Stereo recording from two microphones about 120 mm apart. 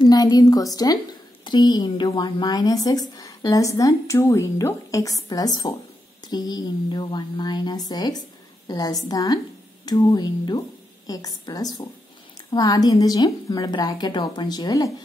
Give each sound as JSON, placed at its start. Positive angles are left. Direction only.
{"t": 0.0, "sound": "a woman's voice", "side_deg": 35}